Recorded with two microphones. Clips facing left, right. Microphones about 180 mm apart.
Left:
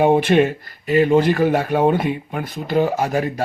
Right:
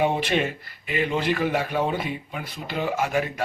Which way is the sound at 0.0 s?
50° left (ahead or behind).